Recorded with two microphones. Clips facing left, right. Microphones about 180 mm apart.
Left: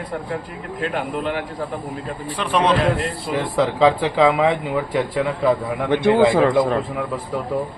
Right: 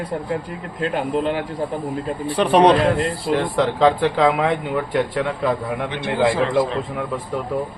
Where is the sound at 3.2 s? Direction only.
5° left (ahead or behind).